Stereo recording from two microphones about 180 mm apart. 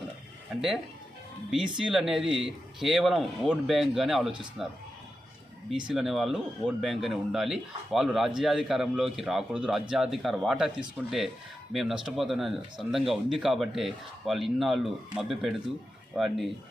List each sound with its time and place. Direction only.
1.5 s speech: 5° right (ahead or behind)
5.9 s speech: centre (ahead or behind)